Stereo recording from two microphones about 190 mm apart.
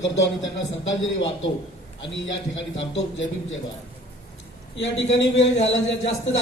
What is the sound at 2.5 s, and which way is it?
A man's voice, 75° left (ahead or behind).